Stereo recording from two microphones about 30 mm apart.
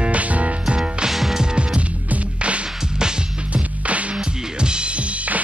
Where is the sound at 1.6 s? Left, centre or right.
Right.